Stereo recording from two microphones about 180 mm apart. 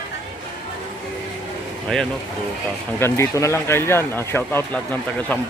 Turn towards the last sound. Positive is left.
turn(degrees=10)  # may be behind; listen again after turning